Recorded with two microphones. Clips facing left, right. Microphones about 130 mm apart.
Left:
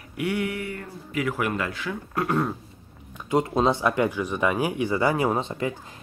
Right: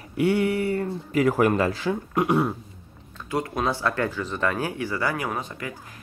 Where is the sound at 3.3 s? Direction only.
20° left (ahead or behind).